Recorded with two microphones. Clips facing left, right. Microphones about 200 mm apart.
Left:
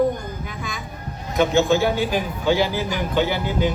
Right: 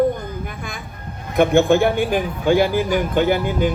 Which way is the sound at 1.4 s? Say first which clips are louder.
Right 4 dB; 55° right (ahead or behind).